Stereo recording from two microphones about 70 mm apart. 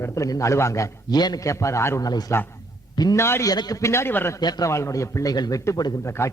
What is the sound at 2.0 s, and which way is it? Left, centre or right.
A man's voice, left.